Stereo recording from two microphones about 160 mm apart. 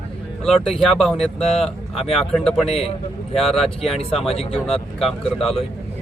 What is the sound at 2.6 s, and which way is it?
Speech, 40° left (ahead or behind).